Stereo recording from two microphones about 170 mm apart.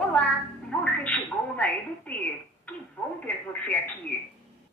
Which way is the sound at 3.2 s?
10° left (ahead or behind).